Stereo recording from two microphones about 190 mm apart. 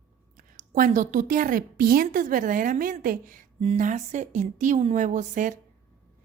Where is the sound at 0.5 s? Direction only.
45° right (ahead or behind).